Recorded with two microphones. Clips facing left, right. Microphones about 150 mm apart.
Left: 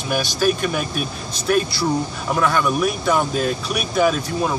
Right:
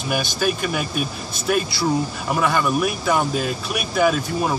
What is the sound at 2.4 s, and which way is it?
Speech, 5° right (ahead or behind).